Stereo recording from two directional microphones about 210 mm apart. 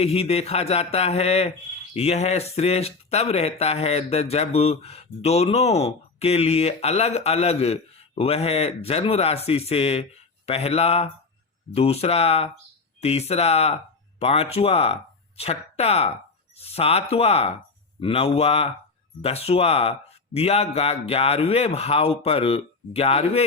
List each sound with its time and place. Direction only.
0.0 s speech: 30° left (ahead or behind)